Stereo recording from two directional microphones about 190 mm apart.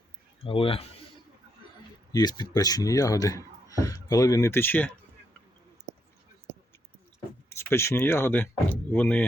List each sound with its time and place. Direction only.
0.4 s a man's voice: 30° left (ahead or behind)
2.1 s a man's voice: 20° left (ahead or behind)
7.5 s speech: 15° left (ahead or behind)